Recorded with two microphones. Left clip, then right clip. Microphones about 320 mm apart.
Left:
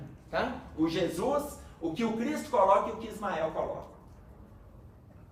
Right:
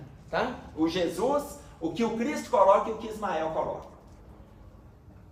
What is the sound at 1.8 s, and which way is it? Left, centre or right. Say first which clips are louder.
Speech: right 3 dB; right.